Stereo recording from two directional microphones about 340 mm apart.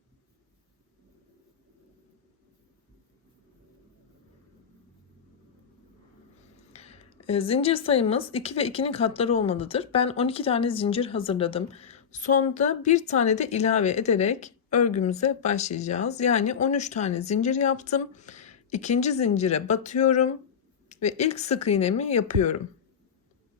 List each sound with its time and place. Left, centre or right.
6.6 s speech: centre